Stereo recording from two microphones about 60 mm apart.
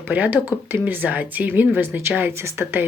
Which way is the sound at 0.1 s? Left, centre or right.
Right.